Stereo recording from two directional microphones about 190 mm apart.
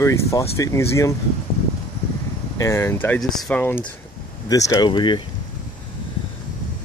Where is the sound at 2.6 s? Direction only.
15° left (ahead or behind).